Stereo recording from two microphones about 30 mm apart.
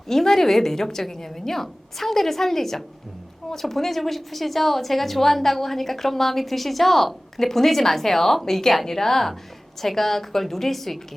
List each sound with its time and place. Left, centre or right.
0.1 s a woman's voice: centre